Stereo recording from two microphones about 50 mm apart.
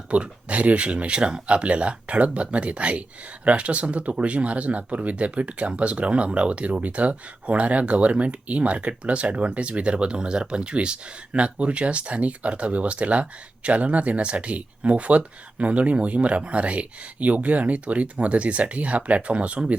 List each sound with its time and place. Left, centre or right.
0.1 s speech: right